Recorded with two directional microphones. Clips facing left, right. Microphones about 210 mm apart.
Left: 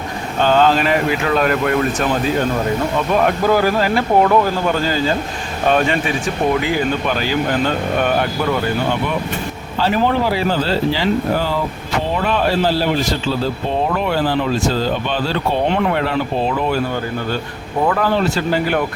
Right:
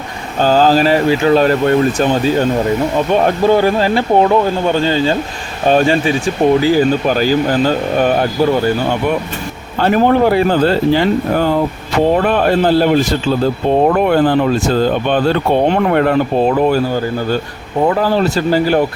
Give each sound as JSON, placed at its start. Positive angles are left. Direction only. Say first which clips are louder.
{"t": 0.3, "sound": "speech", "louder": "right 3 dB", "side_deg": -35}
{"t": 9.7, "sound": "speech", "louder": "right 5 dB", "side_deg": -55}
{"t": 17.8, "sound": "speech", "louder": "right 3 dB", "side_deg": -30}